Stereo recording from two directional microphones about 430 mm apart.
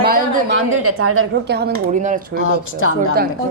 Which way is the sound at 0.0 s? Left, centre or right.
Right.